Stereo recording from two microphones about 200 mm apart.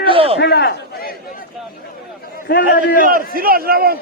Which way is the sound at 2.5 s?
50° left (ahead or behind).